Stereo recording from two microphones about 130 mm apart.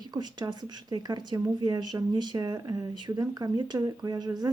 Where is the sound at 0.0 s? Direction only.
35° right (ahead or behind).